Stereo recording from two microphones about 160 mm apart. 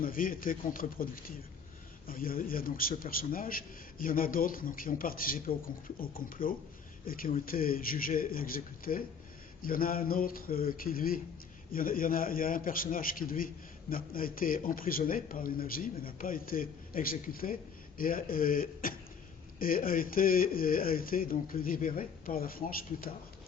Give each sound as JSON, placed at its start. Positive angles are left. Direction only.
{"t": 0.0, "sound": "a man's voice", "side_deg": 60}